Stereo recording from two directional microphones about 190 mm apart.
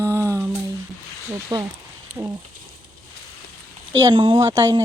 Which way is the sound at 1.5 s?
15° right (ahead or behind).